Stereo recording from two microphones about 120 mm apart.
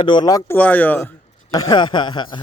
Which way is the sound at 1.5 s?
35° left (ahead or behind).